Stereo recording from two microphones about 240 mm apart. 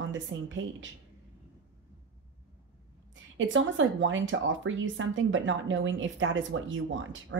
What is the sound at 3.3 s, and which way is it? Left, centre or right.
Speech, right.